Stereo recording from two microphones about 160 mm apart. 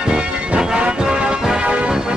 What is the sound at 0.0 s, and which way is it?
Music, 5° right (ahead or behind).